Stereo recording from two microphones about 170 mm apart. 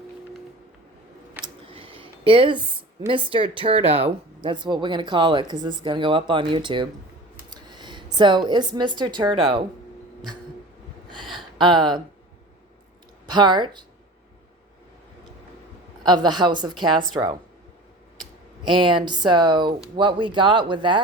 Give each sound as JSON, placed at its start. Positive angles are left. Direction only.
{"t": 1.6, "sound": "a sound", "side_deg": -30}
{"t": 3.1, "sound": "a woman's voice", "side_deg": -30}
{"t": 11.2, "sound": "a sound", "side_deg": 0}
{"t": 11.5, "sound": "speech", "side_deg": -25}
{"t": 13.2, "sound": "a woman's voice", "side_deg": -25}
{"t": 16.0, "sound": "speech", "side_deg": -25}
{"t": 18.6, "sound": "speech", "side_deg": -30}